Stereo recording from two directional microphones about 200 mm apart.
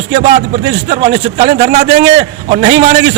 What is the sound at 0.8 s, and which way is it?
A man's voice, 35° right (ahead or behind).